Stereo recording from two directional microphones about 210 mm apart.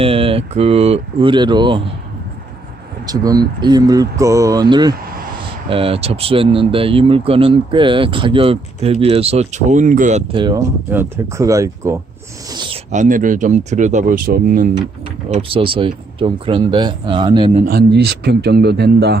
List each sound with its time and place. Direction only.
0.0 s speech: 25° right (ahead or behind)
3.1 s speech: 20° right (ahead or behind)
10.9 s speech: 10° right (ahead or behind)
12.9 s speech: 35° right (ahead or behind)
15.3 s speech: 25° right (ahead or behind)
17.7 s speech: 50° right (ahead or behind)